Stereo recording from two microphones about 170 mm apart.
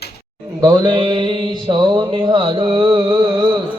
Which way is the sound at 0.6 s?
25° right (ahead or behind).